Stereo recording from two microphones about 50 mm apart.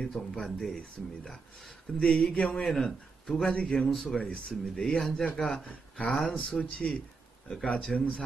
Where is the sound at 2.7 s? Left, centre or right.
Centre.